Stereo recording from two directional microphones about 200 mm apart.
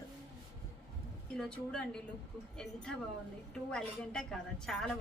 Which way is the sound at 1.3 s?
Centre (ahead or behind).